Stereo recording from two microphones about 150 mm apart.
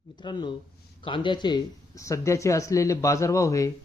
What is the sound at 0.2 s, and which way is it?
Speech, 30° left (ahead or behind).